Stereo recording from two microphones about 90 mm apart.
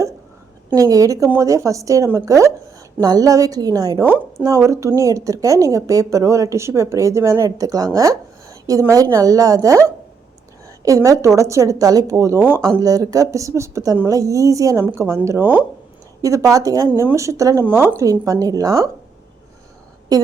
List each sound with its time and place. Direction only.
0.8 s a woman's voice: 40° right (ahead or behind)
15.4 s speech: 20° right (ahead or behind)
16.2 s a woman's voice: 40° right (ahead or behind)
17.7 s a woman's voice: 25° right (ahead or behind)
20.1 s a woman's voice: 40° right (ahead or behind)